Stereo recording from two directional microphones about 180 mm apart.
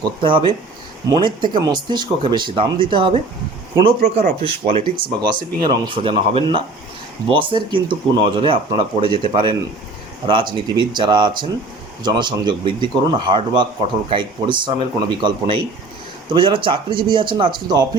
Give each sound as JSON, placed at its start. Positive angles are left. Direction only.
{"t": 0.0, "sound": "speech", "side_deg": -30}
{"t": 4.0, "sound": "speech", "side_deg": -45}
{"t": 4.7, "sound": "speech", "side_deg": -25}